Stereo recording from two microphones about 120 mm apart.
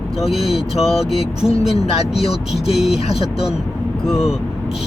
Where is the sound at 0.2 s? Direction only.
Centre (ahead or behind).